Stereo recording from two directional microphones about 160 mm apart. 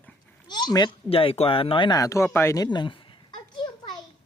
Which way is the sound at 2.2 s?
15° left (ahead or behind).